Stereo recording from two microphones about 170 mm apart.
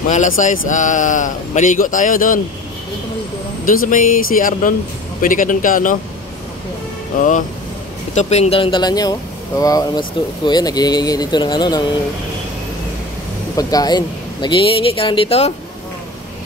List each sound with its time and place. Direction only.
0.1 s a man's voice: 45° left (ahead or behind)
3.6 s a man's voice: 55° left (ahead or behind)
7.2 s a man's voice: 50° left (ahead or behind); by 11.8 s 25° left (ahead or behind)
13.6 s speech: 20° left (ahead or behind)